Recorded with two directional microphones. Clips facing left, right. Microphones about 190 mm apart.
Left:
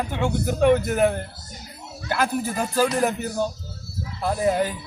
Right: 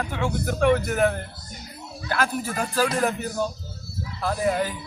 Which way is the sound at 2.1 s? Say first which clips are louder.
Left 2 dB; 20° left (ahead or behind).